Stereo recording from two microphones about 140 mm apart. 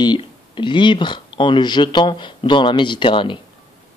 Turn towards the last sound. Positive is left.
turn(degrees=35)  # may be behind; listen again after turning